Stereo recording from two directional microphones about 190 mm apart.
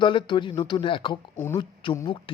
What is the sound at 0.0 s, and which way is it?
Speech, 25° left (ahead or behind).